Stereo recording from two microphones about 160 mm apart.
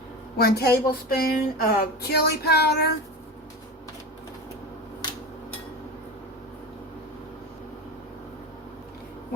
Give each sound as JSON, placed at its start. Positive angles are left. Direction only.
{"t": 0.3, "sound": "speech", "side_deg": 75}